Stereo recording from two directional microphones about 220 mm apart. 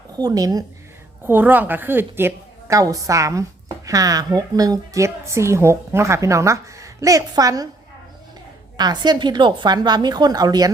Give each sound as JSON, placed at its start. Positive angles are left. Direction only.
{"t": 0.2, "sound": "a woman's voice", "side_deg": -15}
{"t": 8.8, "sound": "a woman's voice", "side_deg": -20}